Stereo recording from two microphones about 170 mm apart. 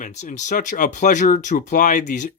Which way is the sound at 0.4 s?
50° left (ahead or behind).